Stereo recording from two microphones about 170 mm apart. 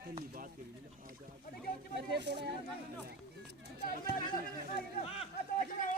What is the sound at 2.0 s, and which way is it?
Speech, 90° right.